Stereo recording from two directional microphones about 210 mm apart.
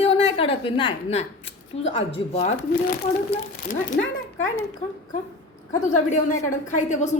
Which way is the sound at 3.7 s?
40° left (ahead or behind).